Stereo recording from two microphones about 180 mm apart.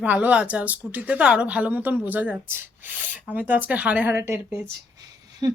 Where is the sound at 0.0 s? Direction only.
5° right (ahead or behind).